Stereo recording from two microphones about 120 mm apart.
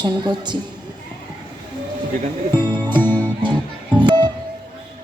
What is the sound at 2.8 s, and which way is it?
Music, 40° right (ahead or behind).